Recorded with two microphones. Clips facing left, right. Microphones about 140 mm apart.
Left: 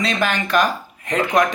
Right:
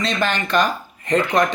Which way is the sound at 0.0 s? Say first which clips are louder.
Left 1 dB; 5° left (ahead or behind).